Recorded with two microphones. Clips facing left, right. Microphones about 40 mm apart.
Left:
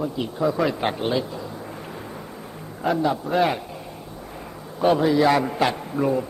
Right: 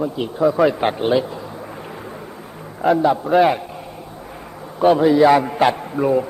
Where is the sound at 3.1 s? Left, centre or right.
Right.